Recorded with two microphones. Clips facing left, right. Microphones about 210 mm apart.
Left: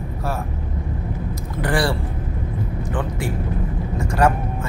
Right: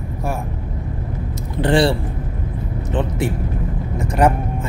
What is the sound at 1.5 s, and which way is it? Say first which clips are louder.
Speech: right 6 dB; 25° right (ahead or behind).